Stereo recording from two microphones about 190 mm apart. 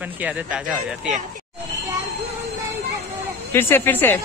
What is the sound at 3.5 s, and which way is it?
Speech, 10° left (ahead or behind).